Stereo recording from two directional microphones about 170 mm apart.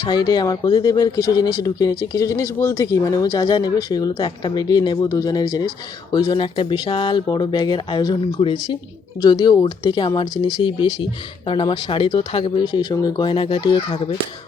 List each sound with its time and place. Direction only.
0.0 s speech: 25° left (ahead or behind)